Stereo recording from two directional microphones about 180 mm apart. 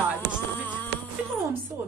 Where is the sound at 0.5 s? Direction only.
10° left (ahead or behind).